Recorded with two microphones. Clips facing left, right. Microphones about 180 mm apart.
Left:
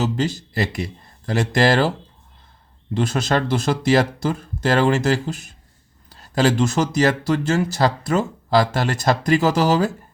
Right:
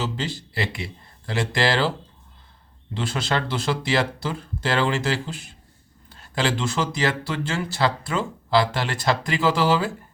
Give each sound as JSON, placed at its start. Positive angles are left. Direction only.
{"t": 0.0, "sound": "speech", "side_deg": 45}
{"t": 2.9, "sound": "speech", "side_deg": 45}